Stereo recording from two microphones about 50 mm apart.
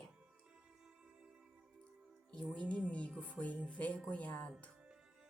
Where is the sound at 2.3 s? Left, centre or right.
Centre.